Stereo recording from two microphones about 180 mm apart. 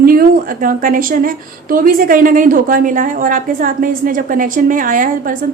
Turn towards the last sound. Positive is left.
turn(degrees=-50)  # may be behind; listen again after turning